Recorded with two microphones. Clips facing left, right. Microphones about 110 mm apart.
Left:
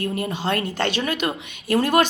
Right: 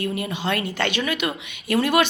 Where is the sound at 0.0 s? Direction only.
45° left (ahead or behind).